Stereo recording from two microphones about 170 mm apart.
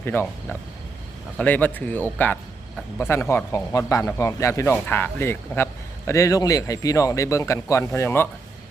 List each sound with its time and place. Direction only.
0.0 s speech: 15° left (ahead or behind)
1.4 s speech: 10° left (ahead or behind)